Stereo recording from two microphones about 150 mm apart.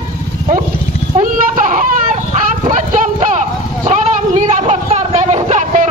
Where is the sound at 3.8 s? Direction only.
50° right (ahead or behind).